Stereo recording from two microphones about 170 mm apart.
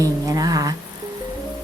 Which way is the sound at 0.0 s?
20° right (ahead or behind).